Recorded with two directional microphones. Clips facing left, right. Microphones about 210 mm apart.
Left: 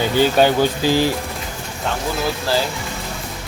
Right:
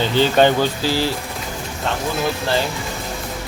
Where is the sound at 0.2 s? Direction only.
10° left (ahead or behind).